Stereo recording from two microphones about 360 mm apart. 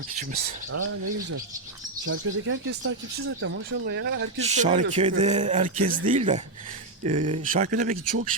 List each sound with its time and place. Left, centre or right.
0.7 s speech: right
4.4 s speech: centre